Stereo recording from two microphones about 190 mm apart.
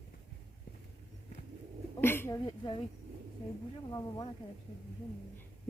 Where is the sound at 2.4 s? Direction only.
25° left (ahead or behind).